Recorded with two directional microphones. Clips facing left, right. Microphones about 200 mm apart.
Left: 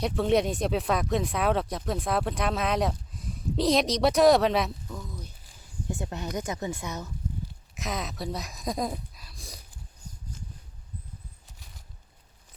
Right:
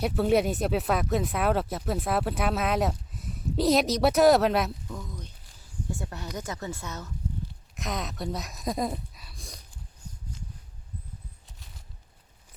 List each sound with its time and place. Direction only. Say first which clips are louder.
0.0 s speech: right 1 dB; 5° right (ahead or behind)
5.9 s speech: left 4 dB; 20° left (ahead or behind)
7.8 s speech: even; centre (ahead or behind)